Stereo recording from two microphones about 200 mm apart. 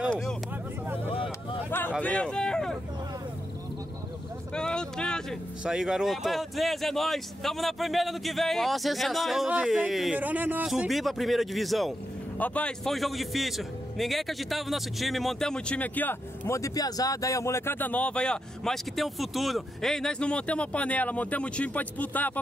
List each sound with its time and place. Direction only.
0.1 s vehicle: 5° left (ahead or behind)
1.1 s vehicle: 25° left (ahead or behind)
1.7 s a sound: 10° left (ahead or behind)
4.6 s a man's voice: 5° left (ahead or behind)